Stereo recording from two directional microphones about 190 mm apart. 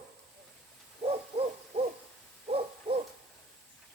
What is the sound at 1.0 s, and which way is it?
Hoot, 30° right (ahead or behind).